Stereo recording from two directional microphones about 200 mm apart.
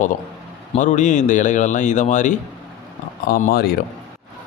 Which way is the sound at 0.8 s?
35° left (ahead or behind).